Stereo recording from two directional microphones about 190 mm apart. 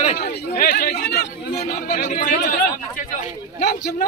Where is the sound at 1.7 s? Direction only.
45° left (ahead or behind).